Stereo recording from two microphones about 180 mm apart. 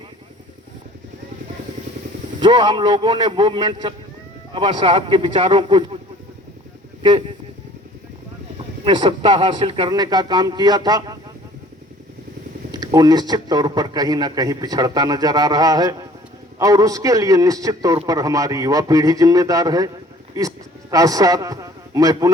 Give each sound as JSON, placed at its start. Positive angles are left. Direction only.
{"t": 2.4, "sound": "a man's voice", "side_deg": -25}
{"t": 7.0, "sound": "speech", "side_deg": -30}
{"t": 8.8, "sound": "a man's voice", "side_deg": -25}
{"t": 12.7, "sound": "a man's voice", "side_deg": -20}
{"t": 20.9, "sound": "a man's voice", "side_deg": -20}